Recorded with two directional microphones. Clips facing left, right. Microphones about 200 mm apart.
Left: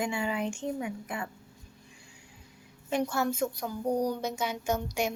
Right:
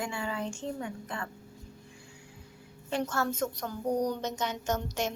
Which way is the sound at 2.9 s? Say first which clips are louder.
Left 2 dB; 15° left (ahead or behind).